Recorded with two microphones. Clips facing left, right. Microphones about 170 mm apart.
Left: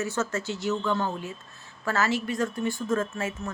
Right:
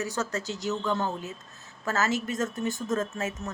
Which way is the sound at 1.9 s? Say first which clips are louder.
Left 1 dB; 40° right (ahead or behind).